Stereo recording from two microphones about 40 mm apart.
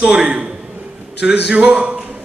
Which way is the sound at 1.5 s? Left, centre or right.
Right.